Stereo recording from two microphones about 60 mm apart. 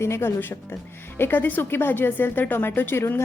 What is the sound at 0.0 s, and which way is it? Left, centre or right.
Speech, left.